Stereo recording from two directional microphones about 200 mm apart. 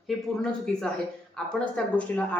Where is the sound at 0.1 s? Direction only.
Centre (ahead or behind).